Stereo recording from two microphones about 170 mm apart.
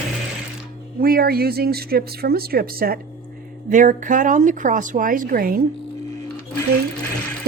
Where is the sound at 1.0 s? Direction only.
65° right (ahead or behind).